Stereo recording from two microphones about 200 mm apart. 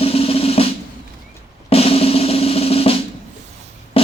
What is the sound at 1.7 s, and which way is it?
Drum, 30° left (ahead or behind).